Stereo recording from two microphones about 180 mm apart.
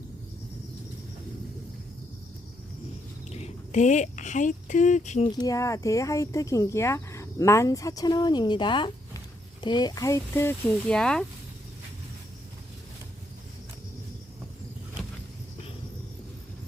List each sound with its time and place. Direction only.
3.2 s speech: 35° left (ahead or behind)
5.3 s speech: 20° left (ahead or behind); by 11.3 s 5° left (ahead or behind)